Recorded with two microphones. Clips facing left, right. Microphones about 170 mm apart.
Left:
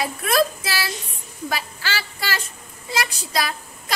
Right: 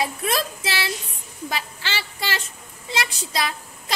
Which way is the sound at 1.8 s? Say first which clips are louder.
Left 1 dB; 20° right (ahead or behind).